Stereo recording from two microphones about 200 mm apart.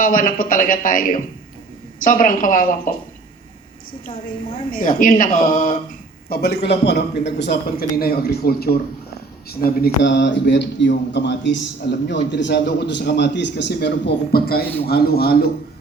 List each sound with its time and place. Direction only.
0.0 s speech: 45° left (ahead or behind)
4.1 s a woman's voice: 25° left (ahead or behind)
4.7 s speech: 45° left (ahead or behind)